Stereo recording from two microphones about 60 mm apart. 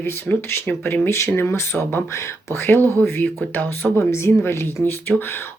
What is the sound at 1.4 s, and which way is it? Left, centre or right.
Speech, left.